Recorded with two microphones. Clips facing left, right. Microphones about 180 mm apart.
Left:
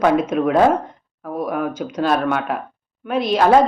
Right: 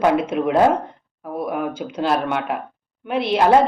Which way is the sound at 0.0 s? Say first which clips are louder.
Left 2 dB; 10° right (ahead or behind).